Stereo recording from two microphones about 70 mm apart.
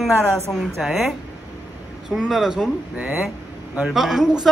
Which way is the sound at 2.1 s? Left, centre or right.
Centre.